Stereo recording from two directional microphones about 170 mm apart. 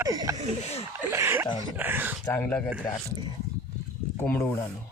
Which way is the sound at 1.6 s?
10° right (ahead or behind).